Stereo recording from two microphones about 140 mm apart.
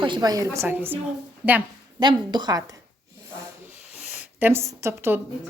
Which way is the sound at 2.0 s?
35° right (ahead or behind).